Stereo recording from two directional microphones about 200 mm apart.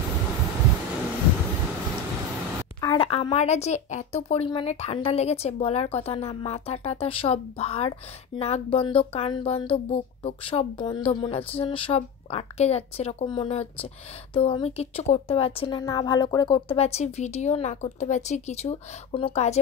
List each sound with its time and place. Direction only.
2.8 s a woman's voice: 25° left (ahead or behind)